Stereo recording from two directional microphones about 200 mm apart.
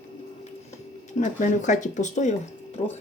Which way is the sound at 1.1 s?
40° left (ahead or behind).